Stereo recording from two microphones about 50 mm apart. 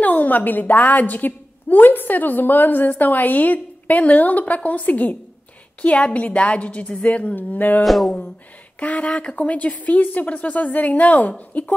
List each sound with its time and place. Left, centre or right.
0.0 s a woman's voice: left
7.8 s a sound: centre
8.7 s speech: left